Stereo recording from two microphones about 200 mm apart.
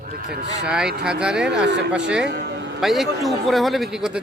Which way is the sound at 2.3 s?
60° right (ahead or behind).